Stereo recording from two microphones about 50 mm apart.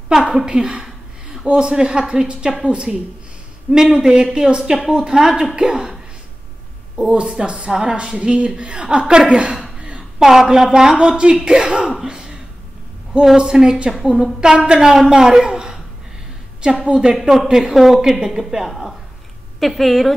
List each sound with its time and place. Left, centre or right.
0.5 s a woman's voice: centre
7.0 s a woman's voice: centre
9.3 s a sound: centre
10.2 s a woman's voice: centre
12.1 s a sound: centre
13.4 s a woman's voice: centre
15.4 s a sound: centre
16.8 s speech: right
17.1 s a woman's voice: centre